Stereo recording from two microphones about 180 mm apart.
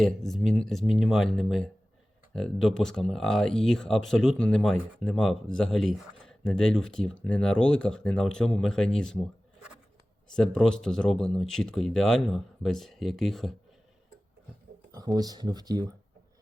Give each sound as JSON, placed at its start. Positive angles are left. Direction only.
{"t": 0.0, "sound": "speech", "side_deg": 0}
{"t": 14.9, "sound": "speech", "side_deg": -20}